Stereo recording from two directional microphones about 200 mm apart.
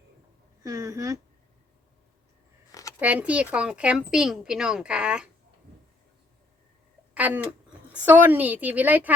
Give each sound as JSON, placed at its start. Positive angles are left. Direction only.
{"t": 0.6, "sound": "a woman's voice", "side_deg": -15}
{"t": 3.0, "sound": "speech", "side_deg": -5}
{"t": 7.1, "sound": "a woman's voice", "side_deg": -10}